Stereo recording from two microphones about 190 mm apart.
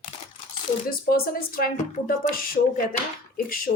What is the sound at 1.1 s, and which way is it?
Speech, 50° left (ahead or behind).